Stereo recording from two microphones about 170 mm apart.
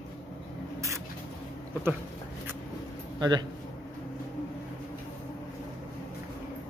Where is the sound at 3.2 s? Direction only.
25° right (ahead or behind).